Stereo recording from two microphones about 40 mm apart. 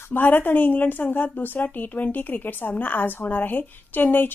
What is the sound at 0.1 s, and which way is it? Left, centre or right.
A woman's voice, left.